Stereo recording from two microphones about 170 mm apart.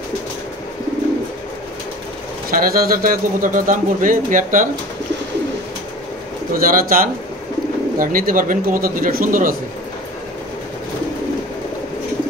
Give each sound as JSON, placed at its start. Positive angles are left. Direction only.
{"t": 2.5, "sound": "speech", "side_deg": -60}
{"t": 6.5, "sound": "a man's voice", "side_deg": -55}